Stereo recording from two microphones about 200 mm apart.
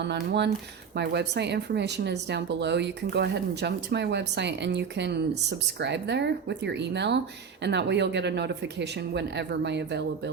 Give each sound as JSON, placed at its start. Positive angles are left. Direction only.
{"t": 0.0, "sound": "speech", "side_deg": -60}